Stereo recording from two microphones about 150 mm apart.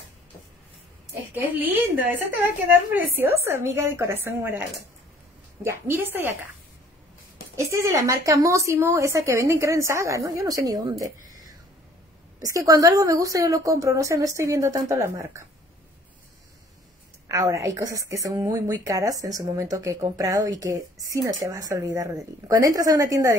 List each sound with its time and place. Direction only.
1.3 s a woman's voice: 10° right (ahead or behind)
3.4 s a woman's voice: 15° right (ahead or behind)
7.5 s a woman's voice: 20° right (ahead or behind)
17.3 s a woman's voice: 20° right (ahead or behind)